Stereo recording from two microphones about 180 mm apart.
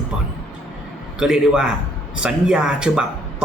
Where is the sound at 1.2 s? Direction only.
5° right (ahead or behind).